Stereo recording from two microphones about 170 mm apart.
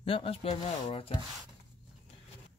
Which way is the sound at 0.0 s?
30° left (ahead or behind).